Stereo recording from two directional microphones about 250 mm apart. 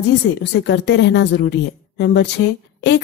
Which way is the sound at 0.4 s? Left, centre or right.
Left.